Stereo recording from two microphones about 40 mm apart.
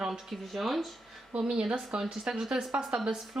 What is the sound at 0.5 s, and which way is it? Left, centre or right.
Speech, centre.